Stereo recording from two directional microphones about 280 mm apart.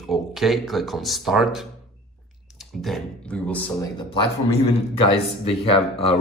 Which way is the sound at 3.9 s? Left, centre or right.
Centre.